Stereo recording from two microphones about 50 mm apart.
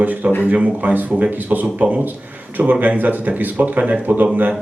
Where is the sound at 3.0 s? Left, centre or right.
Right.